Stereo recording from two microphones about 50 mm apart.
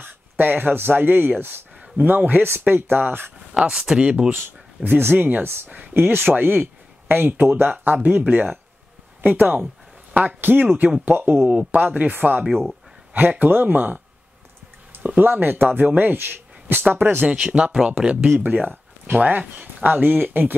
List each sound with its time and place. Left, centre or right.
0.0 s speech: right
3.5 s speech: centre
4.8 s speech: right
5.7 s speech: right
8.2 s speech: right
15.0 s speech: right
17.3 s speech: right
18.4 s speech: right